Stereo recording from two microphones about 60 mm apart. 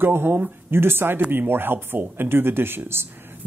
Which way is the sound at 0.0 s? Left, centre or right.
Right.